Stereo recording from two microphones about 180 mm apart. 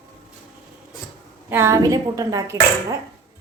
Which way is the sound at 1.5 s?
15° right (ahead or behind).